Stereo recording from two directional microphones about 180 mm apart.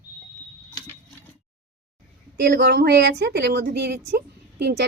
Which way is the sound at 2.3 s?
60° right (ahead or behind).